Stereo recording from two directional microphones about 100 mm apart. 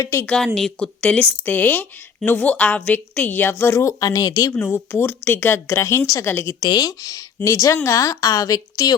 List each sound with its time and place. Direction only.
0.3 s a woman's voice: 5° left (ahead or behind); by 4.5 s 35° left (ahead or behind)
4.6 s a woman's voice: 20° left (ahead or behind)
6.7 s a woman's voice: 40° left (ahead or behind)